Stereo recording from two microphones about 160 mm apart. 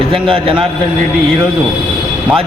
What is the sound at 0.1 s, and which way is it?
Speech, 35° right (ahead or behind).